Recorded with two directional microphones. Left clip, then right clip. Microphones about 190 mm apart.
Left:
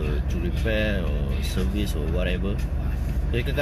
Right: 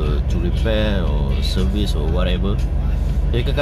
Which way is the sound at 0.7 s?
20° right (ahead or behind).